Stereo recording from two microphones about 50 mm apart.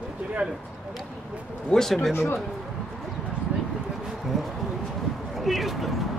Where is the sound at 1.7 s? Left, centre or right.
Centre.